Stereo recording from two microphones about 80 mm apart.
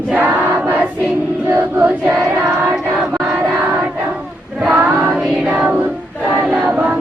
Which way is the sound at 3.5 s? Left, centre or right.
Right.